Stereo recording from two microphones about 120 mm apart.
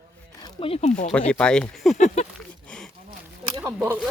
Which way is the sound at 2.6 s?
5° left (ahead or behind).